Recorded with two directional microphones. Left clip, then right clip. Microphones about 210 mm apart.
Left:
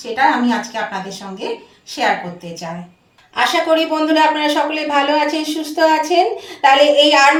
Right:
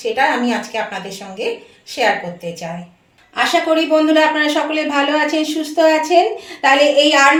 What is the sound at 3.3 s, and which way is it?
A man's voice, 35° right (ahead or behind).